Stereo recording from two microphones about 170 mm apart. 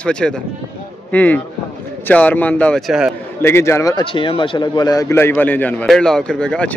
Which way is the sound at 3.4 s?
15° left (ahead or behind).